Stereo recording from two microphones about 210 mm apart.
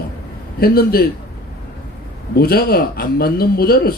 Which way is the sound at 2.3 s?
45° left (ahead or behind).